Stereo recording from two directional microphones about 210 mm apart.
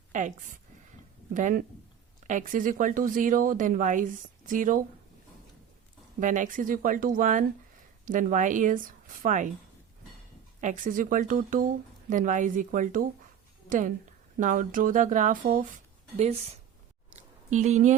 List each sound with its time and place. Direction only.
0.1 s a woman's voice: 35° right (ahead or behind)
6.1 s speech: 35° right (ahead or behind)
10.6 s a woman's voice: 40° right (ahead or behind)
17.2 s a sound: 35° right (ahead or behind)